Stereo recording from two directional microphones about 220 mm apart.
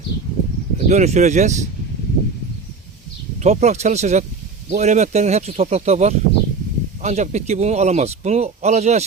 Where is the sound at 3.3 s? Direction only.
30° right (ahead or behind).